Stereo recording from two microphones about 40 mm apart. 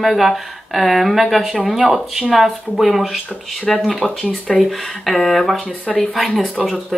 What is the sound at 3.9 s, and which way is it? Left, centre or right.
Speech, centre.